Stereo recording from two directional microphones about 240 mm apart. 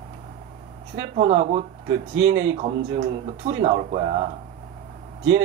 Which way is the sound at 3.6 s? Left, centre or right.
Right.